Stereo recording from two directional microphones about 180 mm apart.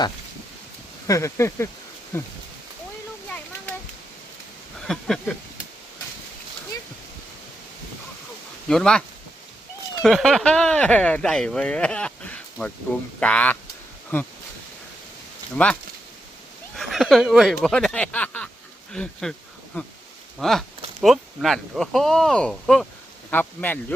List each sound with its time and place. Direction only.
1.0 s speech: 15° left (ahead or behind)
3.2 s a sound: 5° left (ahead or behind)
4.9 s speech: 5° left (ahead or behind)
8.6 s speech: 5° left (ahead or behind)
15.5 s speech: 5° left (ahead or behind)